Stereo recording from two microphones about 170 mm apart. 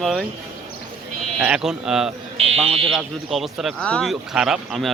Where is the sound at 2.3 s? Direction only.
35° right (ahead or behind).